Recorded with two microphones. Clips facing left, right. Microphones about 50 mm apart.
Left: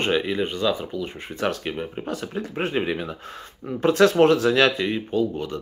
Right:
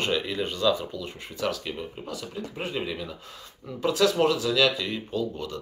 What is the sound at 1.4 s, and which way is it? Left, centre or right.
Speech, left.